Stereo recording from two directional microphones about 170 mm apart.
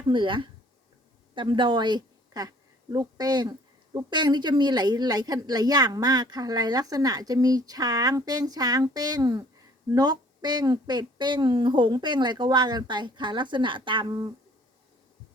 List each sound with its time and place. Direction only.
0.1 s a woman's voice: 30° right (ahead or behind)